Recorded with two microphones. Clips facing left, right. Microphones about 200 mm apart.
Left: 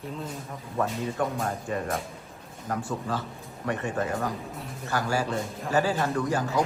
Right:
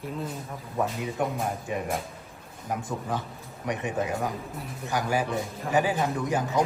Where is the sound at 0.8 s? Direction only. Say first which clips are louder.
Even; 15° right (ahead or behind).